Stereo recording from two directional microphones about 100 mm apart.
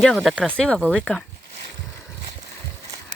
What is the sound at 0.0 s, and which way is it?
Speech, centre (ahead or behind).